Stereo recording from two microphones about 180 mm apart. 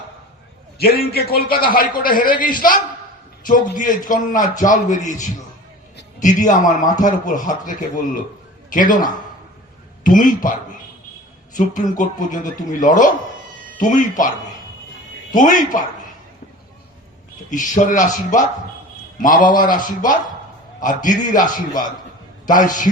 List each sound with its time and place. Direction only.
0.8 s a man's voice: 60° left (ahead or behind)
6.1 s a man's voice: 45° left (ahead or behind)
15.4 s a man's voice: 45° left (ahead or behind)
17.5 s a man's voice: 45° left (ahead or behind)